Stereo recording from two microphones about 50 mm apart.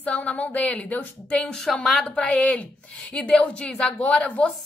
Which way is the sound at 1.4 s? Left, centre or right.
Centre.